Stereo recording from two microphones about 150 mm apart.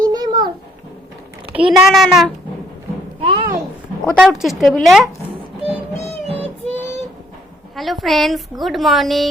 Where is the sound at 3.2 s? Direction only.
40° right (ahead or behind).